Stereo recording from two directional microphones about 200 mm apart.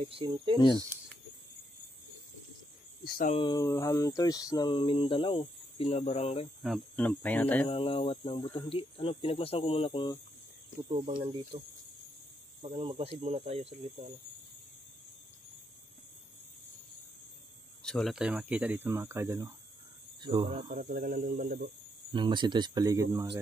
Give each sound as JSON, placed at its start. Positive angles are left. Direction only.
{"t": 0.0, "sound": "speech", "side_deg": -25}
{"t": 3.0, "sound": "speech", "side_deg": 50}
{"t": 3.3, "sound": "a sound", "side_deg": 25}
{"t": 6.6, "sound": "speech", "side_deg": 5}
{"t": 7.6, "sound": "a sound", "side_deg": 25}
{"t": 10.9, "sound": "speech", "side_deg": -30}
{"t": 12.6, "sound": "speech", "side_deg": -30}
{"t": 17.8, "sound": "speech", "side_deg": 0}
{"t": 20.5, "sound": "speech", "side_deg": -45}
{"t": 22.1, "sound": "speech", "side_deg": -25}